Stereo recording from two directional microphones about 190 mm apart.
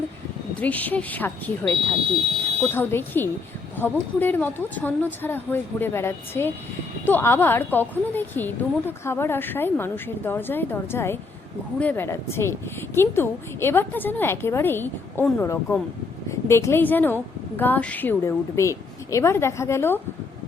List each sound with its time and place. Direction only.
0.6 s a woman's voice: 10° left (ahead or behind)